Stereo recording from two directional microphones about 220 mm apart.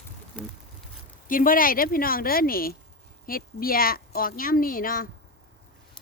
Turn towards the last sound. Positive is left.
turn(degrees=40)  # may be behind; listen again after turning